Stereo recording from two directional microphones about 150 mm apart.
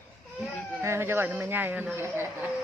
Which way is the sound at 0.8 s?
15° right (ahead or behind).